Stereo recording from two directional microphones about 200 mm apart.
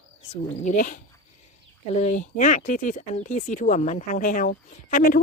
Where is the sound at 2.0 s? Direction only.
40° left (ahead or behind).